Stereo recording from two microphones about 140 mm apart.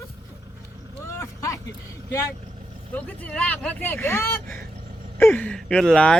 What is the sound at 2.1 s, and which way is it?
Speech, 25° left (ahead or behind).